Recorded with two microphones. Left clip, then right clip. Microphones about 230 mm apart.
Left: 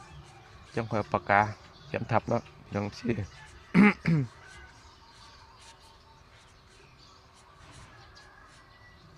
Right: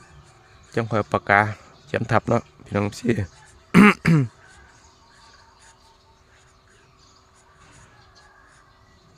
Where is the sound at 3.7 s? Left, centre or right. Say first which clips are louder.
Right 9 dB; right.